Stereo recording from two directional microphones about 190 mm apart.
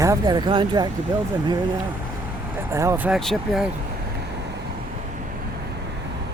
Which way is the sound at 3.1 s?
Centre (ahead or behind).